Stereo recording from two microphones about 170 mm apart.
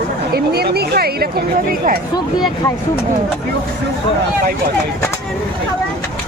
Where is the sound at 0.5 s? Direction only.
70° right (ahead or behind).